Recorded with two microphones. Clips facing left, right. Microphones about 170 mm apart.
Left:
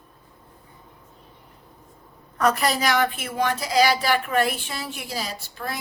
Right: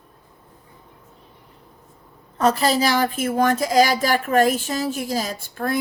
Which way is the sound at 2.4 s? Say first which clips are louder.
Right 3 dB; 30° right (ahead or behind).